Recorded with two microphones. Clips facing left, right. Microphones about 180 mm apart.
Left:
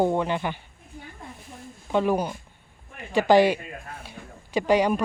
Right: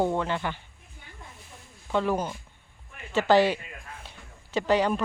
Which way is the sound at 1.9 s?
15° left (ahead or behind).